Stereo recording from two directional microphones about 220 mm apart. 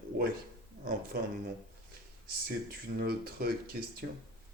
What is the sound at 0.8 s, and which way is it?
Speech, 45° right (ahead or behind).